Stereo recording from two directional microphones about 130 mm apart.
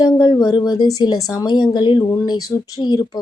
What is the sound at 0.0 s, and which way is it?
A woman's voice, 35° left (ahead or behind).